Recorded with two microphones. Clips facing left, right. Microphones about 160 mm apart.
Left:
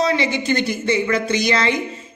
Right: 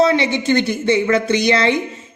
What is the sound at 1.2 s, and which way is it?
Speech, 60° right (ahead or behind).